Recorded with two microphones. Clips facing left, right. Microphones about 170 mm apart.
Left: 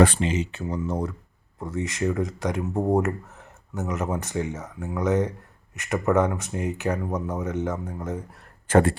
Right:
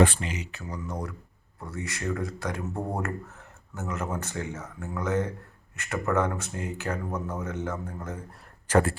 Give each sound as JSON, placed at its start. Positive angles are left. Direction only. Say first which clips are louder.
{"t": 0.2, "sound": "speech", "louder": "left 9 dB", "side_deg": 25}